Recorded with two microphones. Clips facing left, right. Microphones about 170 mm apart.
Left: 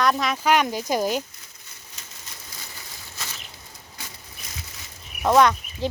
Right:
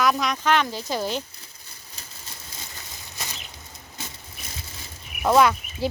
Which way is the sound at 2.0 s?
35° right (ahead or behind).